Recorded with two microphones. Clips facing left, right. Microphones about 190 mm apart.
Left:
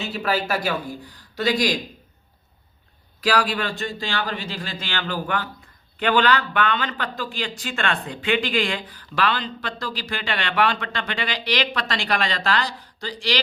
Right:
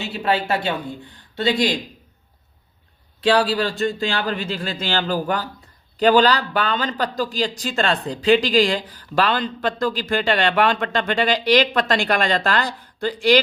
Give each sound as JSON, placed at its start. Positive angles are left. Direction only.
{"t": 0.1, "sound": "speech", "side_deg": -25}
{"t": 3.2, "sound": "a man's voice", "side_deg": -30}